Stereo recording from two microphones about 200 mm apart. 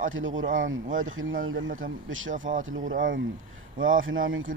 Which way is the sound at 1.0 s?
90° right.